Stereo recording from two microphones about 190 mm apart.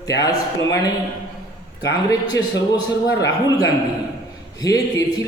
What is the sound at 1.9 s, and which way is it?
Speech, 20° left (ahead or behind).